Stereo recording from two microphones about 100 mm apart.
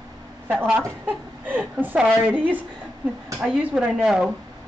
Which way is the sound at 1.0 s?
20° right (ahead or behind).